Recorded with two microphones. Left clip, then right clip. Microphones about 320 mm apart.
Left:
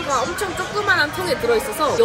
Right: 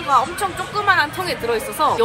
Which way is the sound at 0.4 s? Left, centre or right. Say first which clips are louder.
Right 1 dB; centre.